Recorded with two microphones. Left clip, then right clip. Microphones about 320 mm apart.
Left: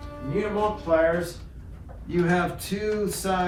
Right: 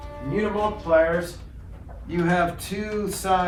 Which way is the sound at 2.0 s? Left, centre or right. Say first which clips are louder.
Right 2 dB; right.